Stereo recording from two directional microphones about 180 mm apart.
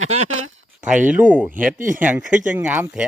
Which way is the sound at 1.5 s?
50° right (ahead or behind).